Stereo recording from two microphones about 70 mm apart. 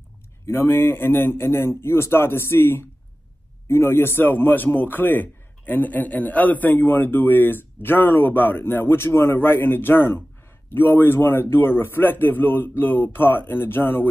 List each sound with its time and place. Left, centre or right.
0.5 s a man's voice: left